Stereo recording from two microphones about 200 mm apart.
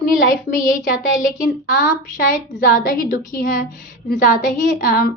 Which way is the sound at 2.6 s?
45° left (ahead or behind).